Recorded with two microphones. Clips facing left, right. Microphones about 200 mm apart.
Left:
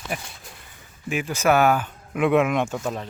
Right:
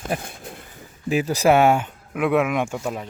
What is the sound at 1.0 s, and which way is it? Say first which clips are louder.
Speech: right 4 dB; 35° right (ahead or behind).